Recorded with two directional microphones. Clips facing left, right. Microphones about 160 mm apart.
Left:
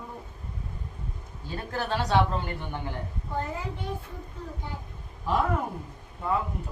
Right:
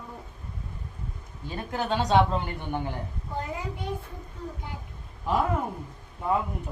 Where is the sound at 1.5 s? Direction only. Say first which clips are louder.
Right 2 dB; 20° right (ahead or behind).